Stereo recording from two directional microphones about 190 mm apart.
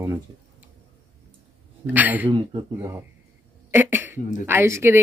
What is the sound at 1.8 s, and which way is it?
Speech, 10° right (ahead or behind).